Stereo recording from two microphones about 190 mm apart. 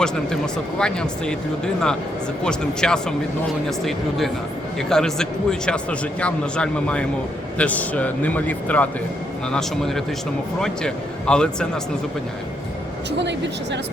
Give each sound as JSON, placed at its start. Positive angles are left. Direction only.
{"t": 0.8, "sound": "a man's voice", "side_deg": 5}